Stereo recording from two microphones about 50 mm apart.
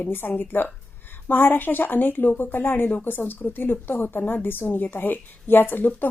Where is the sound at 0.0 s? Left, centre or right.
Left.